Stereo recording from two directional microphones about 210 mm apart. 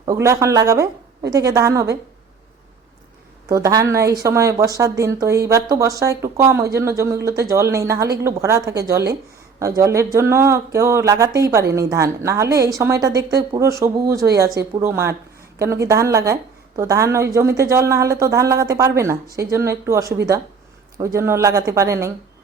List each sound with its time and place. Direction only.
0.0 s speech: 15° right (ahead or behind)
3.5 s speech: 15° right (ahead or behind)